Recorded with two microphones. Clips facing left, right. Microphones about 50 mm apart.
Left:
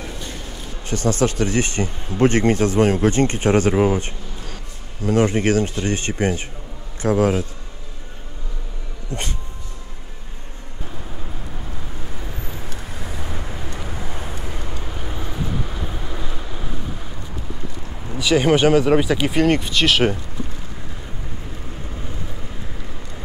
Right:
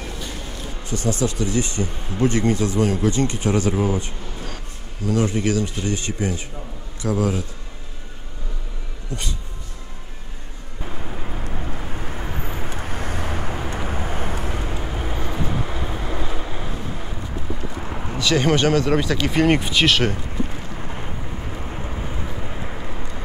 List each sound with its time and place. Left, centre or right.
0.8 s speech: left
9.1 s speech: left
11.5 s vehicle: right
12.8 s vehicle: right
13.5 s vehicle: right
13.8 s vehicle: right
14.6 s vehicle: centre
18.1 s speech: centre
19.3 s speech: centre
20.4 s vehicle: right